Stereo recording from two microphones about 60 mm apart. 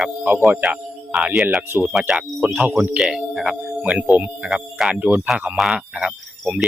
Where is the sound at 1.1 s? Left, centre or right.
Centre.